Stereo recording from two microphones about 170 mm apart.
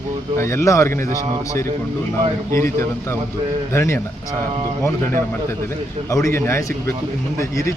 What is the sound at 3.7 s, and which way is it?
Speech, 15° left (ahead or behind).